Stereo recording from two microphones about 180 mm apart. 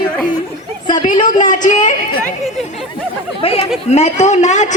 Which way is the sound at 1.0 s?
45° left (ahead or behind).